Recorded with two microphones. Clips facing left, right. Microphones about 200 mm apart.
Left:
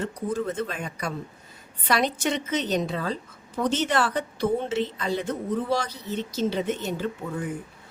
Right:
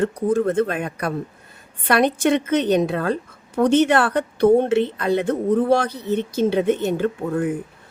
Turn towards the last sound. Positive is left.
turn(degrees=-55)  # may be behind; listen again after turning